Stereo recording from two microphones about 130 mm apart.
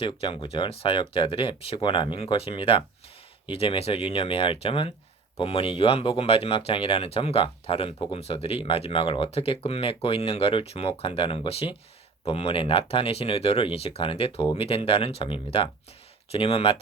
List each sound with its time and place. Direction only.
0.0 s speech: 45° left (ahead or behind)